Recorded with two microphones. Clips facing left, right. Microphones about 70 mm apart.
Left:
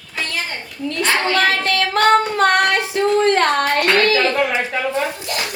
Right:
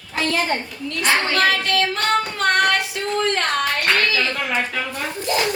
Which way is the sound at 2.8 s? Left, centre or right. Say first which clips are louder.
Left 6 dB; left.